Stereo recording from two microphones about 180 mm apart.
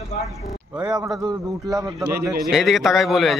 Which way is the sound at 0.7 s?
25° right (ahead or behind).